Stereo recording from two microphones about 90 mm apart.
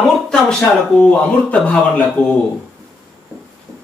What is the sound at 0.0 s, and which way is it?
A man's voice, 5° left (ahead or behind).